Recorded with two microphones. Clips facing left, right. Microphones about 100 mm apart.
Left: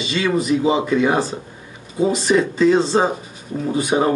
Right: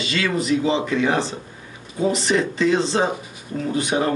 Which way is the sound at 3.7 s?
20° left (ahead or behind).